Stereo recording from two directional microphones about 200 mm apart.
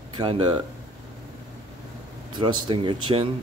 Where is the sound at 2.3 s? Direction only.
25° right (ahead or behind).